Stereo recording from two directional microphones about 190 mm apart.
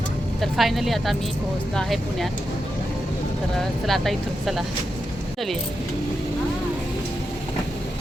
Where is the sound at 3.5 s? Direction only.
Centre (ahead or behind).